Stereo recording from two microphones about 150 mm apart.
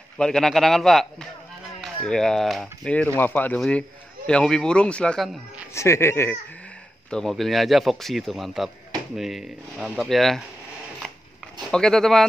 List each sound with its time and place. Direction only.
0.2 s a man's voice: 5° left (ahead or behind)
5.7 s speech: 20° left (ahead or behind)
7.1 s a man's voice: 5° left (ahead or behind)
11.0 s a sound: centre (ahead or behind)
11.7 s a man's voice: 5° left (ahead or behind)